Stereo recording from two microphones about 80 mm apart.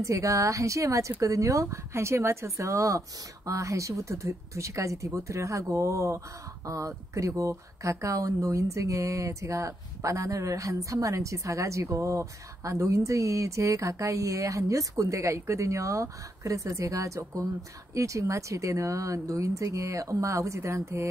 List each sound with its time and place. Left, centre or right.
0.0 s speech: right